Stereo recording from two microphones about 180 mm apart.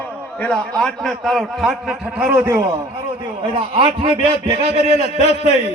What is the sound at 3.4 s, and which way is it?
Speech, 30° right (ahead or behind).